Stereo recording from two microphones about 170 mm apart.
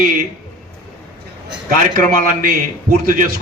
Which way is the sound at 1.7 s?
55° right (ahead or behind).